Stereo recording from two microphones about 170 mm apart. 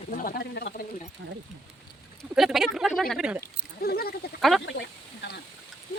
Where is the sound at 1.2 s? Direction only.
90° right.